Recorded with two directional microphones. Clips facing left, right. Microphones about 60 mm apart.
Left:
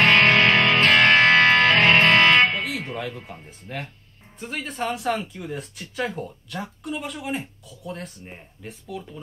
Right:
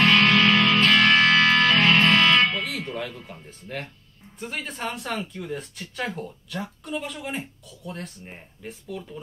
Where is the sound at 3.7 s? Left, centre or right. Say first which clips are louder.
Left 1 dB; centre.